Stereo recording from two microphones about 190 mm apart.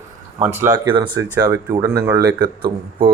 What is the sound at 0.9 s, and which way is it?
Speech, 25° right (ahead or behind).